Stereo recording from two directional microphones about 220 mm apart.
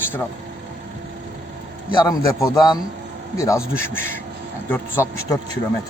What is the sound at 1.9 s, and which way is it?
A man's voice, 15° left (ahead or behind).